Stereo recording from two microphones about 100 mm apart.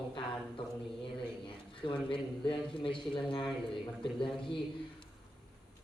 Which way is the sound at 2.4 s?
60° left (ahead or behind).